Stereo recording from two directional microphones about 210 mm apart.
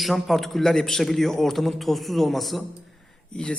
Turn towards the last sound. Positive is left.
turn(degrees=5)  # may be behind; listen again after turning